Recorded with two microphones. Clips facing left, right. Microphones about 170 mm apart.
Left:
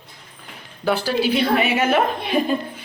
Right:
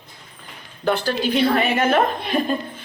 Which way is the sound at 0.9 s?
10° left (ahead or behind).